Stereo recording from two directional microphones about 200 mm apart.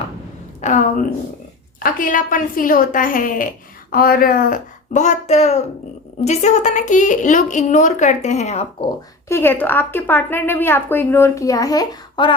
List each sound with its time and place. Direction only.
0.6 s a woman's voice: 40° left (ahead or behind)
9.3 s a woman's voice: 10° left (ahead or behind)